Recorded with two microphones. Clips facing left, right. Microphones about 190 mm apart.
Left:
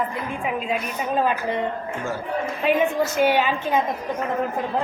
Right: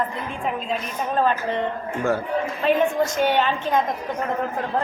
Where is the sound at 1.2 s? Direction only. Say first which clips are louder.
Right 2 dB; 10° left (ahead or behind).